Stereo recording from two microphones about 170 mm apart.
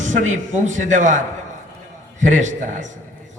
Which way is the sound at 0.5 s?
45° right (ahead or behind).